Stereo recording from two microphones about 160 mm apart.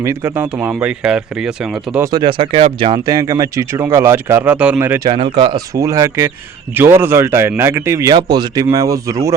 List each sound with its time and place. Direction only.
0.0 s speech: 15° right (ahead or behind)
2.0 s speech: 30° right (ahead or behind)
3.1 s speech: 20° right (ahead or behind)
5.0 s speech: 35° right (ahead or behind); by 9.3 s 20° right (ahead or behind)